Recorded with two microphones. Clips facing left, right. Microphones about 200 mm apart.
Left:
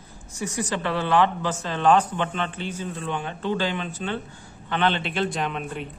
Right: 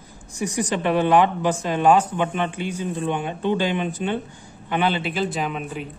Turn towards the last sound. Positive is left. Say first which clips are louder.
# right 2 dB
turn(degrees=-5)  # may be behind; listen again after turning